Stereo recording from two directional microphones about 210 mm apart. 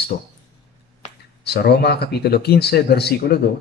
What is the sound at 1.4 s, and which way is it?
A man's voice, 50° left (ahead or behind).